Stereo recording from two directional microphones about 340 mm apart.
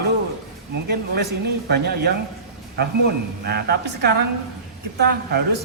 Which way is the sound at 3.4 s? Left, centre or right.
Right.